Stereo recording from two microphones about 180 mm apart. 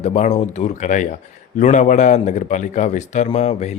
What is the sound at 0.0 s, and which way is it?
Speech, 40° left (ahead or behind).